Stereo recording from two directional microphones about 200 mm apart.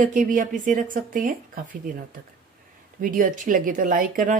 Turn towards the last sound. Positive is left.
turn(degrees=-45)  # may be behind; listen again after turning